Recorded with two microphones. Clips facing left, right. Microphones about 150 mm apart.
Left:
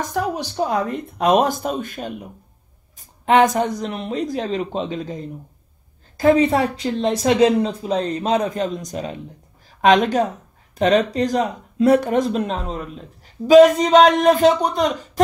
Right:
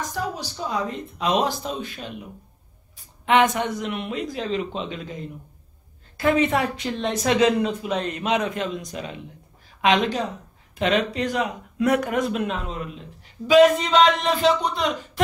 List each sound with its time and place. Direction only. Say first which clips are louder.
0.1 s speech: left 6 dB; 60° left (ahead or behind); by 15.2 s 40° left (ahead or behind)